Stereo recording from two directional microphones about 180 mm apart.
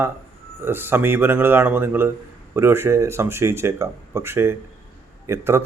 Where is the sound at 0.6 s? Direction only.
10° right (ahead or behind).